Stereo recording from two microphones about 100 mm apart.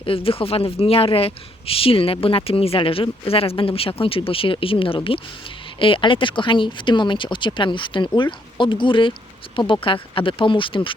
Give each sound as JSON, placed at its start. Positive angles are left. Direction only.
{"t": 0.0, "sound": "speech", "side_deg": 70}